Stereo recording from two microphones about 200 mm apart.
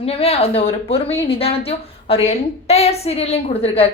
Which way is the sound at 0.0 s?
30° left (ahead or behind).